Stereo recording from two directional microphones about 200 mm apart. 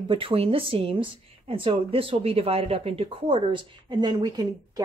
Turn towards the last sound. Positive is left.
turn(degrees=-20)  # may be behind; listen again after turning